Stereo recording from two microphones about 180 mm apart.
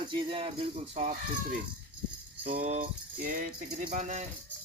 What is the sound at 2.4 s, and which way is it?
Speech, 40° right (ahead or behind).